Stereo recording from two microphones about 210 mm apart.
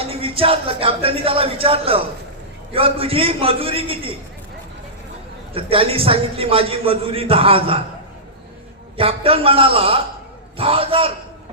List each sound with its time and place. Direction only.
0.0 s a man's voice: 25° right (ahead or behind)
5.5 s a man's voice: 25° right (ahead or behind)
9.0 s a man's voice: 25° right (ahead or behind)